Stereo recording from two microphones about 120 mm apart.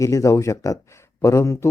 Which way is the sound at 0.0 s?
25° left (ahead or behind).